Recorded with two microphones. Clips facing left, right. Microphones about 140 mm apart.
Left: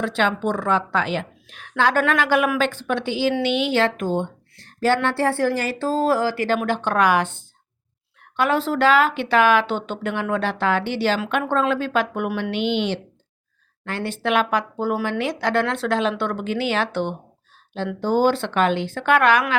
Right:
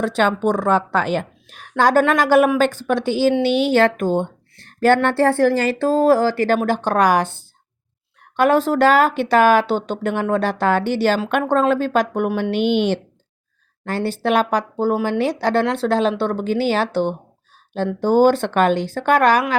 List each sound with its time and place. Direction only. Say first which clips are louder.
0.0 s speech: right 4 dB; 40° right (ahead or behind)
18.0 s speech: right 5 dB; 45° right (ahead or behind)